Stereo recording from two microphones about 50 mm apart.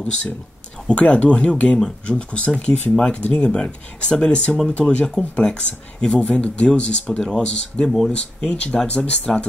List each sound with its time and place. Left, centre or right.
0.8 s speech: left